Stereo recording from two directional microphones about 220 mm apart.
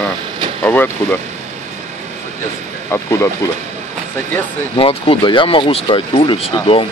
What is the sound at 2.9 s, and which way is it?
Speech, 10° left (ahead or behind).